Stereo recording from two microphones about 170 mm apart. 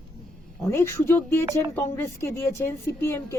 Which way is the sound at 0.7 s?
15° left (ahead or behind).